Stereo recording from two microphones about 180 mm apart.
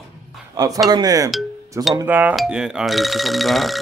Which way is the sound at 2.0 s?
10° right (ahead or behind).